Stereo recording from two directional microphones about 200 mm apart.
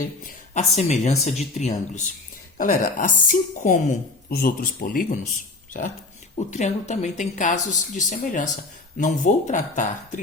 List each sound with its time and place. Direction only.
0.0 s speech: 40° left (ahead or behind)